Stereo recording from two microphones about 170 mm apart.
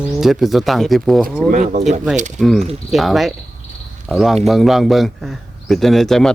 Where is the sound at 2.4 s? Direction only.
Centre (ahead or behind).